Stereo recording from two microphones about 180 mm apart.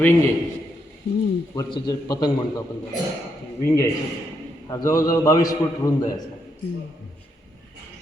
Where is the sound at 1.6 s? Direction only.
25° left (ahead or behind).